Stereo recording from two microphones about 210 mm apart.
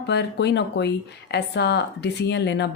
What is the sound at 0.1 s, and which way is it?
Speech, 55° left (ahead or behind).